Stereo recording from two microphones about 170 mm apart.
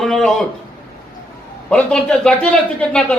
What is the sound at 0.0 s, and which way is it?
Speech, 5° left (ahead or behind).